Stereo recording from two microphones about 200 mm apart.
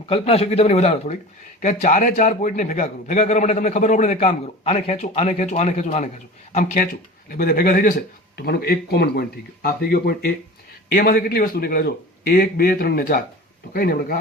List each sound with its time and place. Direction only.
0.1 s a man's voice: 30° left (ahead or behind); by 14.2 s 50° left (ahead or behind)